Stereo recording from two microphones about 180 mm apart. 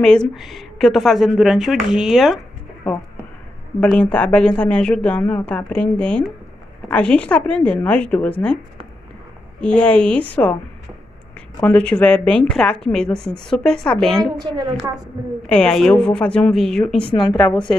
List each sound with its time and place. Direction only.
0.0 s speech: 5° left (ahead or behind)
3.8 s a woman's voice: 5° left (ahead or behind)
9.6 s a woman's voice: 5° left (ahead or behind)
11.6 s speech: 5° left (ahead or behind)
15.4 s speech: 5° left (ahead or behind)
17.0 s speech: 25° left (ahead or behind)